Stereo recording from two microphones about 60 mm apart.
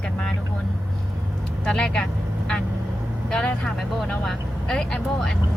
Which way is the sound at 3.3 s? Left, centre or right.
Centre.